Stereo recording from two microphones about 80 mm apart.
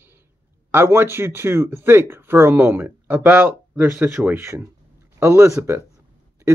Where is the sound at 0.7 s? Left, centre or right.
Right.